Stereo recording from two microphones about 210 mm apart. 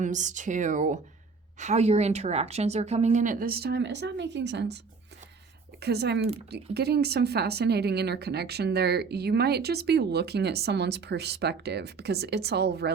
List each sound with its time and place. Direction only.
0.0 s speech: 35° right (ahead or behind); by 4.8 s 55° right (ahead or behind)
5.8 s speech: 50° right (ahead or behind)